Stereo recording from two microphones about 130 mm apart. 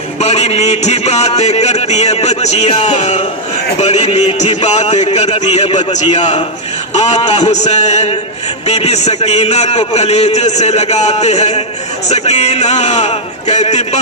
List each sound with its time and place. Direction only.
0.2 s a man's voice: 55° left (ahead or behind)